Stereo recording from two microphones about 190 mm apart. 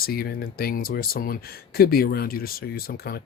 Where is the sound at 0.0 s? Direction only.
50° left (ahead or behind).